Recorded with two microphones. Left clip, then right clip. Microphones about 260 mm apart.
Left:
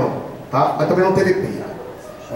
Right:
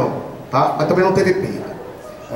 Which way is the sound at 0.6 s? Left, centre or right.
Centre.